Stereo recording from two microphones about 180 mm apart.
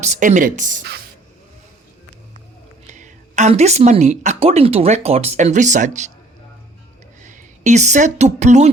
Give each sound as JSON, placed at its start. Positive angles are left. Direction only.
{"t": 0.0, "sound": "speech", "side_deg": -40}
{"t": 2.9, "sound": "a woman's voice", "side_deg": -40}
{"t": 7.3, "sound": "speech", "side_deg": -40}